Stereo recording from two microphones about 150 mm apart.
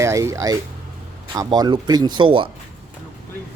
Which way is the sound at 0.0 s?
20° right (ahead or behind).